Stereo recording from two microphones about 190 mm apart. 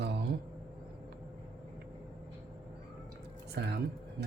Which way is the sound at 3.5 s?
60° right (ahead or behind).